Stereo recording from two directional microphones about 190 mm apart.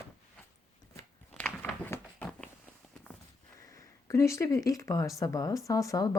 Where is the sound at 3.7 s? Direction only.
15° left (ahead or behind).